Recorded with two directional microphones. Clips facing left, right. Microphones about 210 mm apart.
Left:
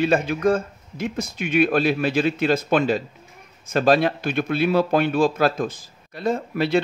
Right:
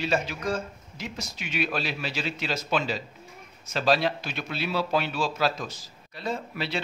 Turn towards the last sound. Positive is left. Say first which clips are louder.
# left 10 dB
turn(degrees=50)  # may be behind; listen again after turning